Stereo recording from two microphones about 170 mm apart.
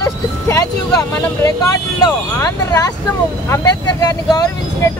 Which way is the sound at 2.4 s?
20° left (ahead or behind).